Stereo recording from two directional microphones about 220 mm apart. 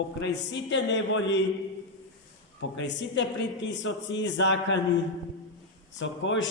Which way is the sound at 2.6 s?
55° left (ahead or behind).